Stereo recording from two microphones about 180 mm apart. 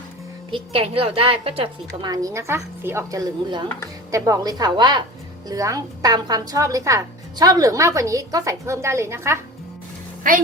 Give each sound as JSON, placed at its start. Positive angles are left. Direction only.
{"t": 0.5, "sound": "a woman's voice", "side_deg": -30}
{"t": 2.0, "sound": "a woman's voice", "side_deg": -20}